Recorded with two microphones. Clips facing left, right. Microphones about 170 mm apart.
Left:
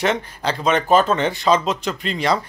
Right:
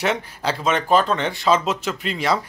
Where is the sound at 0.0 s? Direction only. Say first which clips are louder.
Left 2 dB; 5° right (ahead or behind).